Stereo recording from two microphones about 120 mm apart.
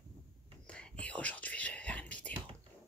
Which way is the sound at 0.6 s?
10° left (ahead or behind).